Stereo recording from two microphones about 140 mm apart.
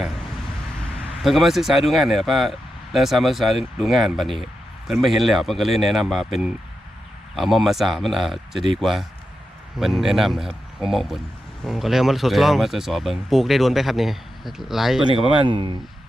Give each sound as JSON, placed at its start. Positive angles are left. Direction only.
{"t": 1.2, "sound": "speech", "side_deg": 0}
{"t": 7.3, "sound": "speech", "side_deg": 0}
{"t": 15.4, "sound": "speech", "side_deg": -35}